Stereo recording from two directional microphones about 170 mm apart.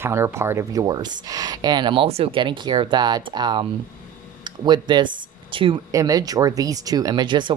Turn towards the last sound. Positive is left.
turn(degrees=-25)  # may be behind; listen again after turning